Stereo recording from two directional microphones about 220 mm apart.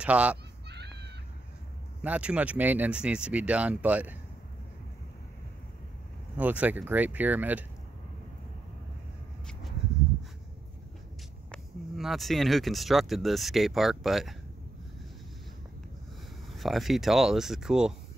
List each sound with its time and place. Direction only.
0.0 s speech: 5° right (ahead or behind)
0.7 s a sound: 50° right (ahead or behind)
2.0 s speech: 5° right (ahead or behind)
6.3 s speech: 5° right (ahead or behind)
11.5 s speech: centre (ahead or behind)
16.4 s speech: centre (ahead or behind)